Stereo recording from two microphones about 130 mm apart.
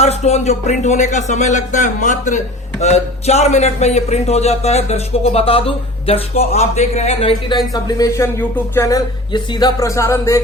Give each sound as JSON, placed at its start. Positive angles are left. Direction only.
{"t": 0.0, "sound": "speech", "side_deg": 55}
{"t": 2.8, "sound": "speech", "side_deg": 55}
{"t": 9.3, "sound": "speech", "side_deg": 35}